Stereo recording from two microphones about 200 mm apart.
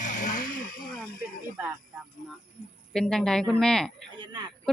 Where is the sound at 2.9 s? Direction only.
5° left (ahead or behind).